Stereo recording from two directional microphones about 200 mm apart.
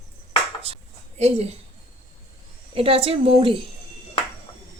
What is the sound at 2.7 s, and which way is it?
Speech, 30° right (ahead or behind).